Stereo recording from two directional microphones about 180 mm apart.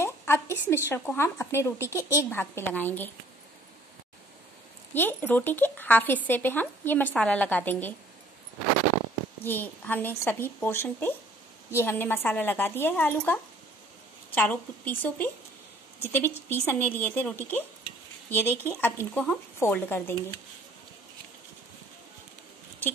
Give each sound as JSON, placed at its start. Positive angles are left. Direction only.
{"t": 0.0, "sound": "a sound", "side_deg": 15}
{"t": 0.8, "sound": "speech", "side_deg": 10}
{"t": 4.9, "sound": "speech", "side_deg": 10}
{"t": 9.4, "sound": "speech", "side_deg": 10}